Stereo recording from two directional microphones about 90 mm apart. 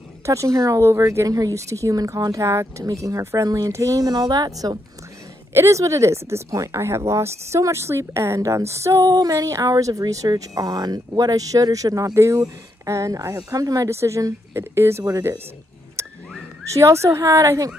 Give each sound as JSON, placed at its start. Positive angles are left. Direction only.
{"t": 0.3, "sound": "speech", "side_deg": -35}
{"t": 5.5, "sound": "speech", "side_deg": -30}
{"t": 16.0, "sound": "dog", "side_deg": -35}
{"t": 16.6, "sound": "speech", "side_deg": -35}